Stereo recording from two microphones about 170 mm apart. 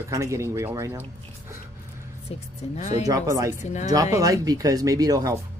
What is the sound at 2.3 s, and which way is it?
Speech, 40° left (ahead or behind).